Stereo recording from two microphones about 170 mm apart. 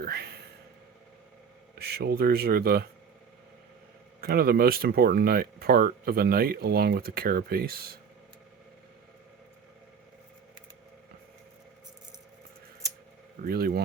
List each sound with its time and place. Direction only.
0.0 s a sound: 70° right (ahead or behind)
1.8 s speech: 70° right (ahead or behind)
4.2 s speech: 65° right (ahead or behind)
13.4 s speech: 60° right (ahead or behind)